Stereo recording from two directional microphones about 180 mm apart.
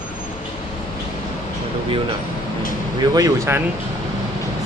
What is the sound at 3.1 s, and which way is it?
Speech, 15° right (ahead or behind).